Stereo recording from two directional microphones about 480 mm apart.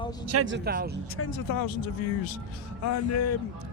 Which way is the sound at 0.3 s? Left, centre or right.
Right.